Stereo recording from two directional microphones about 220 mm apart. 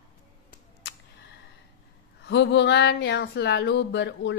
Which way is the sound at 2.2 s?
55° left (ahead or behind).